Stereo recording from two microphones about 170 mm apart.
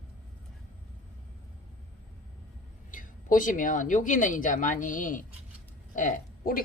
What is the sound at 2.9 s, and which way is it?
Speech, 50° left (ahead or behind).